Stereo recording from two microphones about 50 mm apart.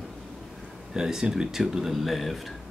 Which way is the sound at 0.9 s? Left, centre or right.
Centre.